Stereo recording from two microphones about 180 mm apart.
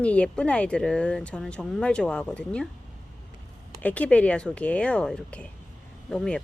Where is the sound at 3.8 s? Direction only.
10° left (ahead or behind).